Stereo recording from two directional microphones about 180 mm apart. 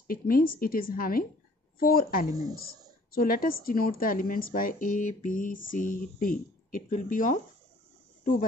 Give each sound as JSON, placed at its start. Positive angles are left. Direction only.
{"t": 0.0, "sound": "a woman's voice", "side_deg": 50}